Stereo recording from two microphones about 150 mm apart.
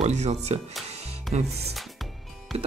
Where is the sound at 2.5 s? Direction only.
45° right (ahead or behind).